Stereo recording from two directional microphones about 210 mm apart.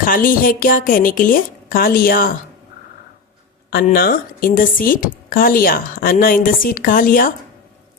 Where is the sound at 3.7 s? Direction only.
45° left (ahead or behind).